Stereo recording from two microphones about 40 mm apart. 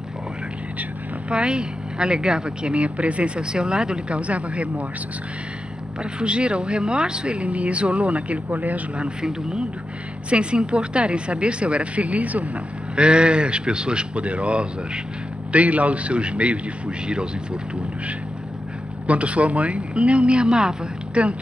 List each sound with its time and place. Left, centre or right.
1.3 s speech: right
4.2 s speech: right
6.1 s speech: right
7.4 s speech: right
9.2 s speech: centre
10.3 s speech: right
12.9 s speech: right
19.0 s speech: right